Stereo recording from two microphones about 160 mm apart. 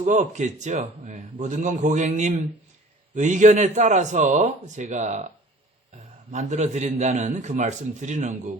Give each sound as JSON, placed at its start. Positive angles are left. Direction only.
{"t": 0.0, "sound": "speech", "side_deg": -50}
{"t": 6.3, "sound": "speech", "side_deg": -45}